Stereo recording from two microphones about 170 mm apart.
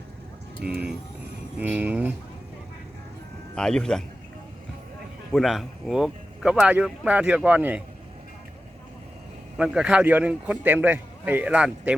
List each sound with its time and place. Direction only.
0.6 s a man's voice: 5° right (ahead or behind)
3.5 s speech: 5° left (ahead or behind)
5.3 s speech: centre (ahead or behind)
9.6 s a man's voice: 5° right (ahead or behind)